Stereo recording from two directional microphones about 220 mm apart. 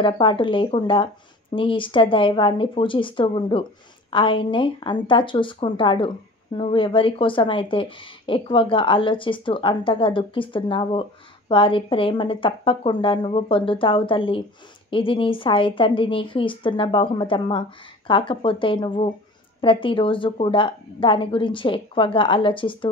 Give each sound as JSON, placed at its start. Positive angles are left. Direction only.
{"t": 0.0, "sound": "speech", "side_deg": 20}